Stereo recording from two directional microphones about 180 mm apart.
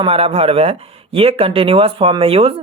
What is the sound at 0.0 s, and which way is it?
Speech, 30° right (ahead or behind).